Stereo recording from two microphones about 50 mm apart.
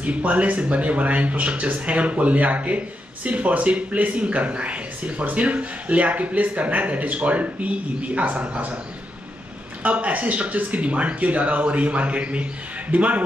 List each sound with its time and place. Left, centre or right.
0.0 s speech: right
9.8 s speech: right